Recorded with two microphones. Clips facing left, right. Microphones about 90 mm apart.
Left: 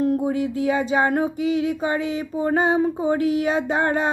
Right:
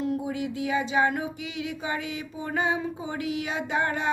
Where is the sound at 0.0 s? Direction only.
45° left (ahead or behind).